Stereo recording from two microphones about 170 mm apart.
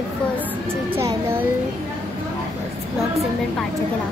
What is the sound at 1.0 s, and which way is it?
Speech, 15° right (ahead or behind).